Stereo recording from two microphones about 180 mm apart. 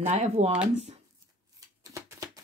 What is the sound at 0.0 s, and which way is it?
Speech, 35° right (ahead or behind).